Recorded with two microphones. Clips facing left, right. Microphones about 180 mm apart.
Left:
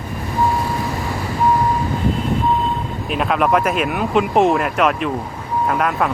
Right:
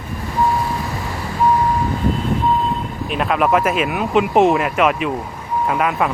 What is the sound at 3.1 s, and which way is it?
Speech, centre (ahead or behind).